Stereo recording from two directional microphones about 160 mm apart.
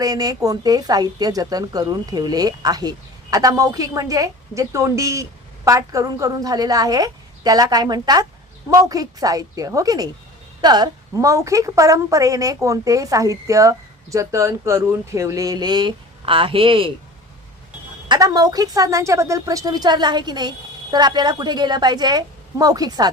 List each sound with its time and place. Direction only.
0.0 s speech: 25° right (ahead or behind)
18.1 s speech: 20° right (ahead or behind)